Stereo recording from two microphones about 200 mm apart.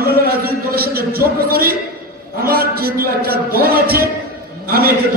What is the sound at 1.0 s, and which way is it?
A man's voice, 50° right (ahead or behind).